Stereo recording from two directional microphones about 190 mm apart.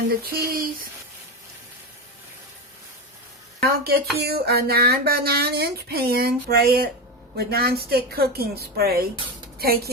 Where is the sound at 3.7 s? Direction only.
55° right (ahead or behind).